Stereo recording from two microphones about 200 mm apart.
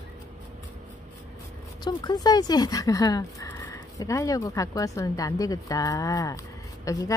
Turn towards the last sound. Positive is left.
turn(degrees=15)  # may be behind; listen again after turning